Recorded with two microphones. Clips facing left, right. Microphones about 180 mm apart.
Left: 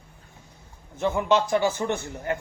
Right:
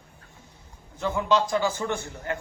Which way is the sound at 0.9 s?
20° left (ahead or behind).